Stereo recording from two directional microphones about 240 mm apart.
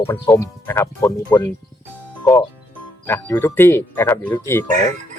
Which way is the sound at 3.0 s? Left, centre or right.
Centre.